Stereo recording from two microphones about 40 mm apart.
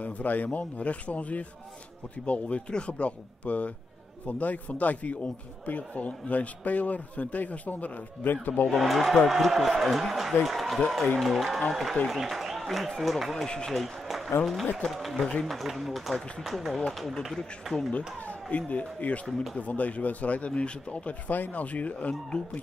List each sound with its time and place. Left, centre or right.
0.0 s a man's voice: left
8.3 s speech: left
8.6 s a man's voice: centre
17.9 s a man's voice: left
21.3 s a man's voice: left
22.3 s speech: centre